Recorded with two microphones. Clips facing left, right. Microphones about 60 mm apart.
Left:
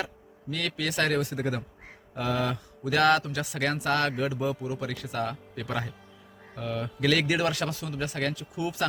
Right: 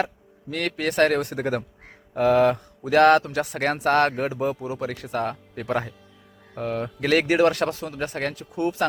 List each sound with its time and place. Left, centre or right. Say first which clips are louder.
0.5 s speech: right 6 dB; right